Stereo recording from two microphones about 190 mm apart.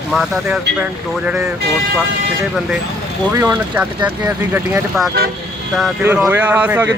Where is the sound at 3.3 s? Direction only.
20° right (ahead or behind).